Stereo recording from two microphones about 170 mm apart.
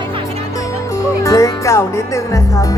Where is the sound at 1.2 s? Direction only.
20° left (ahead or behind).